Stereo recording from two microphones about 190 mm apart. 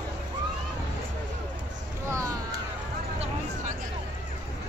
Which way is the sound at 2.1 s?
15° right (ahead or behind).